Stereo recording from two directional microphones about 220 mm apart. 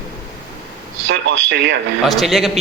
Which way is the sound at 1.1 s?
55° right (ahead or behind).